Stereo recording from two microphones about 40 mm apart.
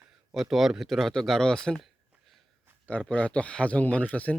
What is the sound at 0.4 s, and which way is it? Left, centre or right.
Speech, centre.